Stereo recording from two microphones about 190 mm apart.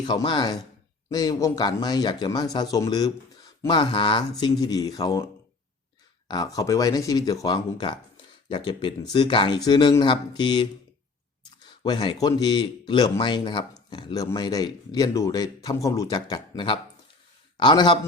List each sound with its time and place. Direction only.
0.0 s speech: 25° left (ahead or behind)
6.2 s speech: 20° left (ahead or behind)